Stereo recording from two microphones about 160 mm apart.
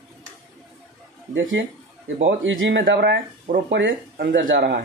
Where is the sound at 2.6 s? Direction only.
90° right.